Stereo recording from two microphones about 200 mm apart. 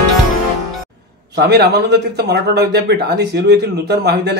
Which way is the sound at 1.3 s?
55° right (ahead or behind).